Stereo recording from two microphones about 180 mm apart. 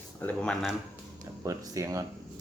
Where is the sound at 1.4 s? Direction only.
20° right (ahead or behind).